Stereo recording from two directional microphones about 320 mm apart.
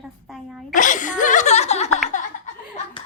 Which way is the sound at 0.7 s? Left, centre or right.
Left.